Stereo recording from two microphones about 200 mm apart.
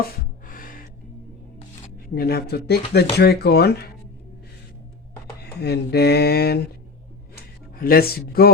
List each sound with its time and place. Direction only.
0.0 s music: 45° left (ahead or behind)
2.1 s speech: 50° left (ahead or behind)
5.4 s speech: 55° left (ahead or behind)
7.8 s speech: 45° left (ahead or behind)